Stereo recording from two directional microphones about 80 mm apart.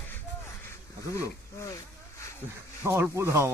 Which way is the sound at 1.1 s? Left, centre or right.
Left.